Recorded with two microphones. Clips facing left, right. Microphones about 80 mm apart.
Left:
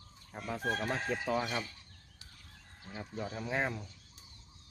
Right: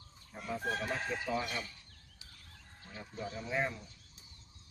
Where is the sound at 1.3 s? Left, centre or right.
Left.